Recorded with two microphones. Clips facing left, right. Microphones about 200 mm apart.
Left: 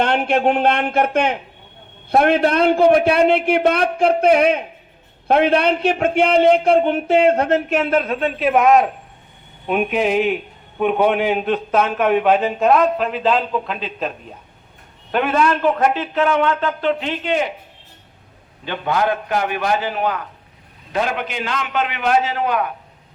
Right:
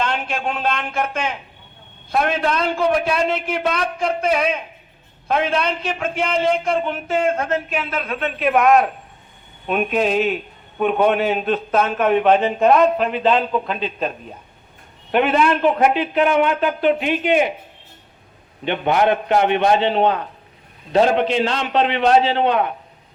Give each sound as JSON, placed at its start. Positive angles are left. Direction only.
{"t": 0.0, "sound": "a man's voice", "side_deg": 60}
{"t": 7.2, "sound": "speech", "side_deg": 65}
{"t": 7.8, "sound": "a man's voice", "side_deg": 45}
{"t": 8.1, "sound": "a man's voice", "side_deg": 30}
{"t": 15.1, "sound": "a man's voice", "side_deg": -10}
{"t": 18.6, "sound": "a man's voice", "side_deg": -20}